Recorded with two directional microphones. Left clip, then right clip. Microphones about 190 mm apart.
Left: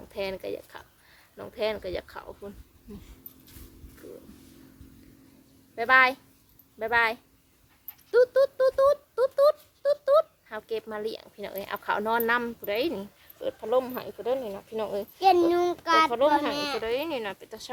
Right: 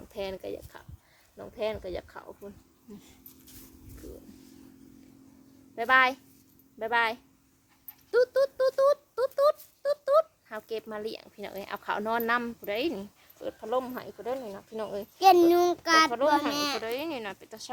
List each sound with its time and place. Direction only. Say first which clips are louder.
0.1 s speech: left 3 dB; centre (ahead or behind)
5.7 s a woman's voice: left 2 dB; 5° right (ahead or behind)
15.2 s a child's voice: right 2 dB; 55° right (ahead or behind)
16.8 s speech: left 4 dB; 5° right (ahead or behind)